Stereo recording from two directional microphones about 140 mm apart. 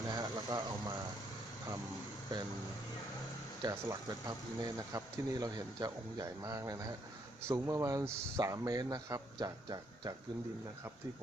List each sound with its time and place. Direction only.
0.1 s speech: 25° right (ahead or behind)
3.6 s speech: 25° right (ahead or behind)